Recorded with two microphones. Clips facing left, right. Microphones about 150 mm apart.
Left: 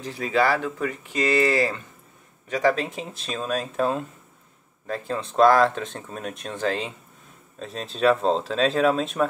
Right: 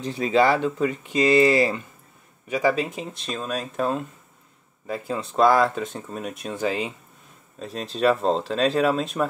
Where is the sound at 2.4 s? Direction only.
5° right (ahead or behind).